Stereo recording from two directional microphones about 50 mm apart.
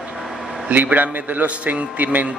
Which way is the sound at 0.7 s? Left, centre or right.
Right.